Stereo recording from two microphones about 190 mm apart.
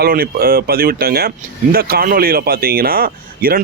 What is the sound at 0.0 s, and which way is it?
A man's voice, 50° right (ahead or behind).